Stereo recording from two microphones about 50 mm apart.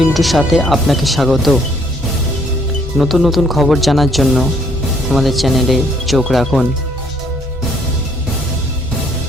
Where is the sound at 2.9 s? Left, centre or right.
Centre.